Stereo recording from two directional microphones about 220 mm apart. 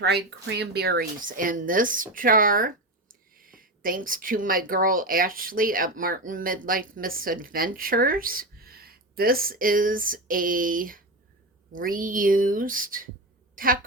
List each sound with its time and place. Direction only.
0.0 s a woman's voice: 50° right (ahead or behind)